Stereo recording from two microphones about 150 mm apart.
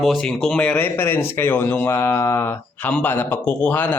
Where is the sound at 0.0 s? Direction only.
Centre (ahead or behind).